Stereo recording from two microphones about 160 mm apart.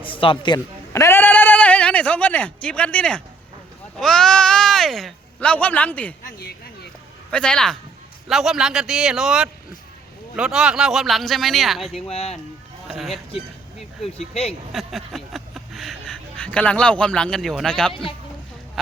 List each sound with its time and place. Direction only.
0.0 s a sound: 35° left (ahead or behind); by 3.2 s 5° left (ahead or behind)
3.9 s speech: 5° left (ahead or behind)
7.3 s speech: 5° left (ahead or behind)
12.0 s speech: 40° left (ahead or behind)
12.9 s speech: centre (ahead or behind)
14.2 s speech: 40° left (ahead or behind)
14.7 s speech: centre (ahead or behind)